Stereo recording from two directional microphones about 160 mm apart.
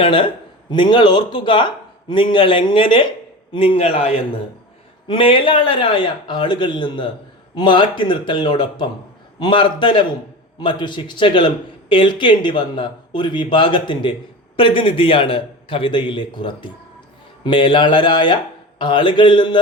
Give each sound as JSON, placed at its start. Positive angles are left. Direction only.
{"t": 0.0, "sound": "speech", "side_deg": 35}